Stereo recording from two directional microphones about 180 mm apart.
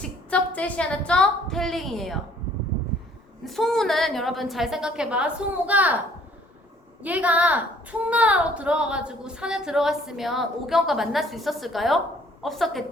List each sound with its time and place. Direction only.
0.3 s a woman's voice: 5° left (ahead or behind)
3.4 s a woman's voice: centre (ahead or behind)
7.0 s a woman's voice: 10° right (ahead or behind)